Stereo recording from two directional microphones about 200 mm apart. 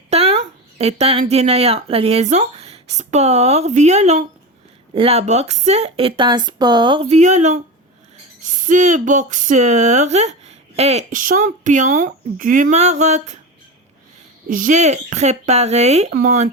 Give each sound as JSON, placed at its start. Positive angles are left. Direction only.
{"t": 0.1, "sound": "a sound", "side_deg": -30}
{"t": 1.2, "sound": "speech", "side_deg": -30}
{"t": 14.4, "sound": "speech", "side_deg": -40}